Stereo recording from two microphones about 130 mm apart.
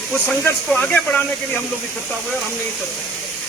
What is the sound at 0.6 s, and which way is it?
Speech, 10° left (ahead or behind).